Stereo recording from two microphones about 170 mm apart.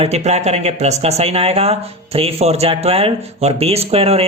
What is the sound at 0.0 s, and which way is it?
Speech, 40° right (ahead or behind).